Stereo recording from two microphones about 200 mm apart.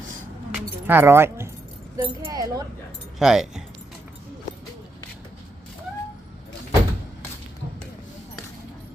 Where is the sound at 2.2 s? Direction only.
15° right (ahead or behind).